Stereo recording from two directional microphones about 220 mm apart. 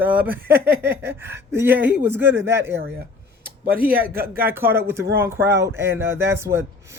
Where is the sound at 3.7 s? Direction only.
40° right (ahead or behind).